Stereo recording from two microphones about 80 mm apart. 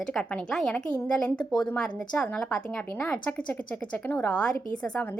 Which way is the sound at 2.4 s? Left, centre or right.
Centre.